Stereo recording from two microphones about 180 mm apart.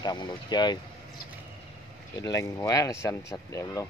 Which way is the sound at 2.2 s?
20° left (ahead or behind).